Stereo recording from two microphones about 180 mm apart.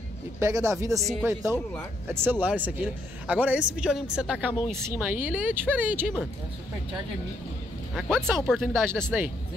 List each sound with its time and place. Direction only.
0.4 s speech: 15° right (ahead or behind)
8.5 s speech: centre (ahead or behind)
9.0 s speech: 10° right (ahead or behind)